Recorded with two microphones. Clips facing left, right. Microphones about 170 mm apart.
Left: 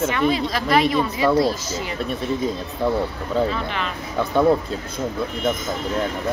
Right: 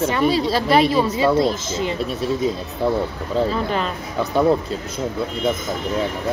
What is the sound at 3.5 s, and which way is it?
Speech, 40° right (ahead or behind).